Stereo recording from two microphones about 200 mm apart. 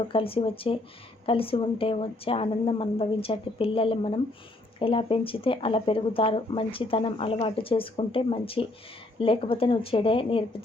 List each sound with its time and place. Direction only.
0.1 s speech: 25° left (ahead or behind)